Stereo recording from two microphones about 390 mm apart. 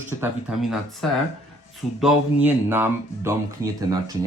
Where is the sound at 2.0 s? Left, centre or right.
Centre.